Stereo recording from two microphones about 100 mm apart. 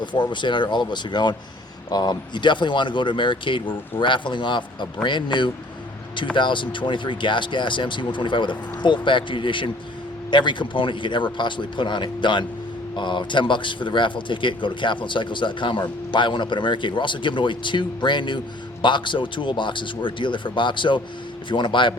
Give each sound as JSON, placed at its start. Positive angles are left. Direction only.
{"t": 0.0, "sound": "speech", "side_deg": 50}